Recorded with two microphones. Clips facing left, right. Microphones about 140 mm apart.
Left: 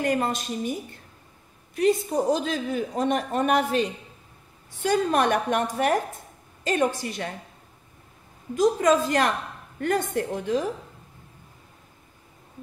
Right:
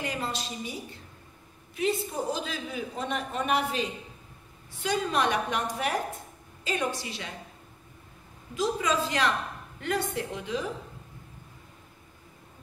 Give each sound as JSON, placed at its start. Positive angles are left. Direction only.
{"t": 0.0, "sound": "a man's voice", "side_deg": 50}
{"t": 1.8, "sound": "a man's voice", "side_deg": 45}
{"t": 8.5, "sound": "a man's voice", "side_deg": 45}